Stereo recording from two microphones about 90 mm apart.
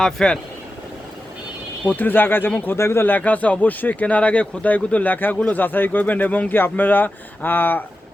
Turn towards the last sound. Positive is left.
turn(degrees=20)  # may be behind; listen again after turning